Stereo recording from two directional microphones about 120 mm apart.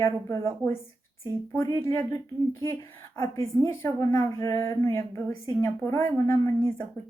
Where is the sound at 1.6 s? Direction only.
25° left (ahead or behind).